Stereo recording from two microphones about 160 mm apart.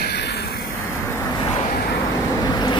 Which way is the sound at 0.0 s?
90° left.